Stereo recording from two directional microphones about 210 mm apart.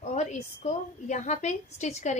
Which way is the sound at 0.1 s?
35° left (ahead or behind).